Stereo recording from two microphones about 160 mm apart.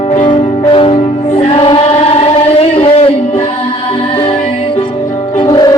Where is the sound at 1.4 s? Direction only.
35° left (ahead or behind).